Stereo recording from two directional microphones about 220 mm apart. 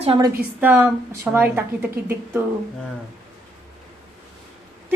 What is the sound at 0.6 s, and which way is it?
A woman's voice, 10° right (ahead or behind).